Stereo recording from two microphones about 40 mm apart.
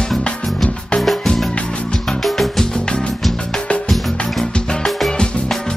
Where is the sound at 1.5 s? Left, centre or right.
Left.